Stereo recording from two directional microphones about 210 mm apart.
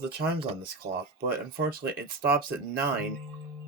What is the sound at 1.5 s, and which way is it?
Speech, 50° right (ahead or behind).